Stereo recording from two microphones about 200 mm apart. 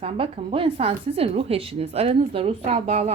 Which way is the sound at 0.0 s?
30° right (ahead or behind).